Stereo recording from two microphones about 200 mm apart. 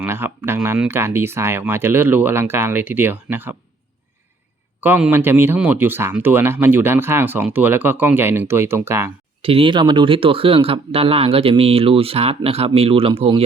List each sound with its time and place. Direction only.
0.0 s speech: 10° right (ahead or behind)
4.8 s speech: 5° right (ahead or behind)
9.4 s speech: 25° right (ahead or behind)